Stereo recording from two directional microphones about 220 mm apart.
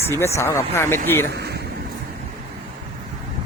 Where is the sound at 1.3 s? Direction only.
50° right (ahead or behind).